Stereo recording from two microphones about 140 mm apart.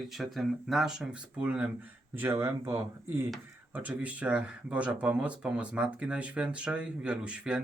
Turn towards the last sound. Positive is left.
turn(degrees=-5)  # may be behind; listen again after turning